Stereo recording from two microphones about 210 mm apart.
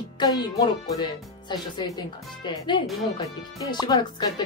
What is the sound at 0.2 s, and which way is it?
Speech, 20° left (ahead or behind).